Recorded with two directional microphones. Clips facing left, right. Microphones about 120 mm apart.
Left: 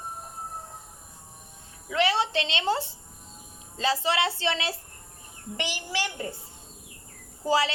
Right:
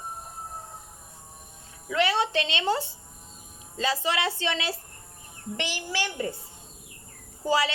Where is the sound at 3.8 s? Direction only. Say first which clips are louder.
Left 1 dB; 30° left (ahead or behind).